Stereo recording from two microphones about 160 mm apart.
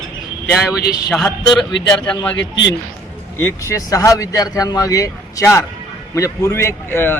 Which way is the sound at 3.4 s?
20° left (ahead or behind).